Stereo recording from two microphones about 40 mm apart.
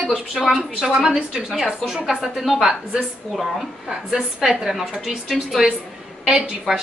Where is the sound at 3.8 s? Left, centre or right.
Centre.